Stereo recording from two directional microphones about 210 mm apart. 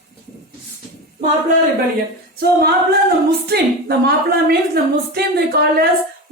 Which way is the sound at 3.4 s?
50° right (ahead or behind).